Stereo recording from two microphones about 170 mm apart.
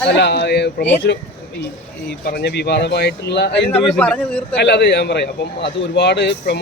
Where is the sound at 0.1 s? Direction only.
90° left.